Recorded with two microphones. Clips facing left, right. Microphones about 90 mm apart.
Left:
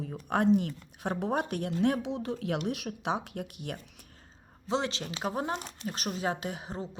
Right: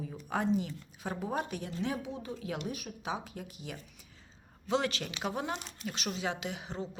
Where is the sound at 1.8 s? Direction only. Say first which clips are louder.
Left 8 dB; 75° left (ahead or behind).